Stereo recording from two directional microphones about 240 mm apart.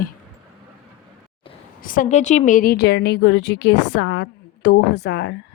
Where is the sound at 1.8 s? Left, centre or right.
Left.